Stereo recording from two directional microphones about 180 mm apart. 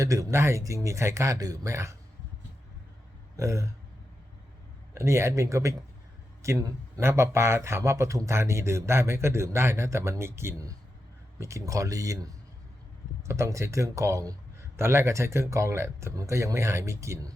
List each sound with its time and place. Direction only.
0.0 s speech: 20° right (ahead or behind)
3.3 s speech: 15° right (ahead or behind)
4.9 s speech: 15° right (ahead or behind)